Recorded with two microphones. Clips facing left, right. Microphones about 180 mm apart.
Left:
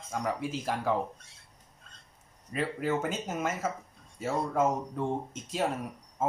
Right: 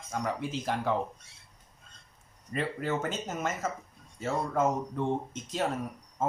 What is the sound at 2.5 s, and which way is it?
Speech, 5° left (ahead or behind).